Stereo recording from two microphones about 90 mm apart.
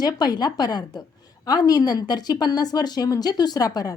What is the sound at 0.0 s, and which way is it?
A woman's voice, 50° left (ahead or behind).